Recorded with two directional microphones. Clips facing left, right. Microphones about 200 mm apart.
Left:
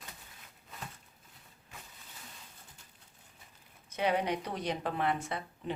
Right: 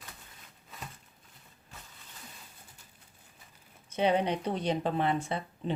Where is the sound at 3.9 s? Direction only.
25° right (ahead or behind).